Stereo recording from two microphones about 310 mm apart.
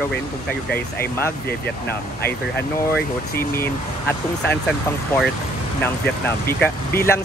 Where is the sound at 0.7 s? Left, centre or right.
Centre.